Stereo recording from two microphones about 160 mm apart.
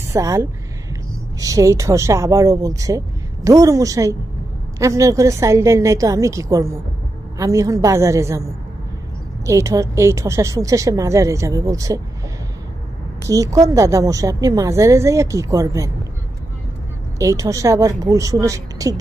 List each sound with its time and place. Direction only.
0.1 s a woman's voice: 20° right (ahead or behind)
9.5 s a woman's voice: 20° right (ahead or behind)
13.3 s a woman's voice: 20° right (ahead or behind)
17.2 s a woman's voice: 20° right (ahead or behind)